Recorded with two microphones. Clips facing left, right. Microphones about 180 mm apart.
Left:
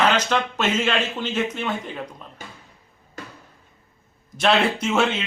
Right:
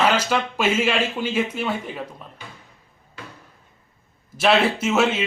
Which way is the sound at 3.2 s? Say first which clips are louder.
Left 2 dB; 45° left (ahead or behind).